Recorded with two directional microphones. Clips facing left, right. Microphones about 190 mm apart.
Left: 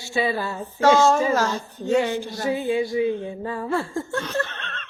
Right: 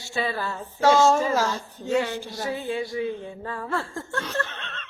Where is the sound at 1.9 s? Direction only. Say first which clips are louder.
Left 4 dB; 20° left (ahead or behind).